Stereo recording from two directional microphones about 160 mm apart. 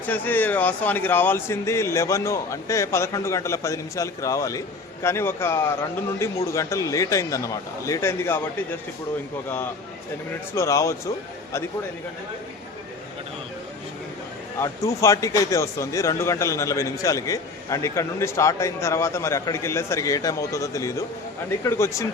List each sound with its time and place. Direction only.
0.0 s a man's voice: 10° left (ahead or behind)
10.5 s a man's voice: 20° left (ahead or behind)
14.6 s a man's voice: 20° left (ahead or behind)